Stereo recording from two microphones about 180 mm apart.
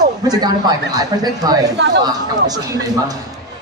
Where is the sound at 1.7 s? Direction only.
75° right (ahead or behind).